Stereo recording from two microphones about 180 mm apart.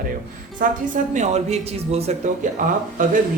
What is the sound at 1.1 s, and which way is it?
Speech, 40° right (ahead or behind).